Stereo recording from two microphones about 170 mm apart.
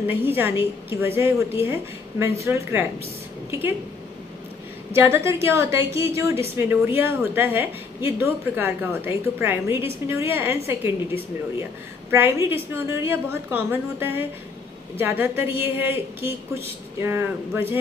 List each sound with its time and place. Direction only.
0.0 s a woman's voice: 10° right (ahead or behind)
4.9 s a woman's voice: 15° right (ahead or behind)
12.1 s a woman's voice: 15° right (ahead or behind)